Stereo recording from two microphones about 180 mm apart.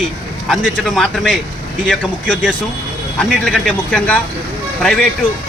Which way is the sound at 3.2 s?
5° left (ahead or behind).